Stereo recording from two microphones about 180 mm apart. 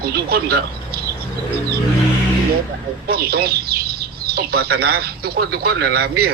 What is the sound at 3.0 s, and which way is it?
Speech, 60° right (ahead or behind).